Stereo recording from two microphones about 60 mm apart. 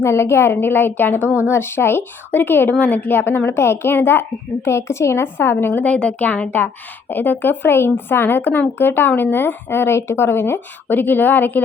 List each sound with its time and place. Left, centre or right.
0.0 s speech: left
3.6 s a woman's voice: left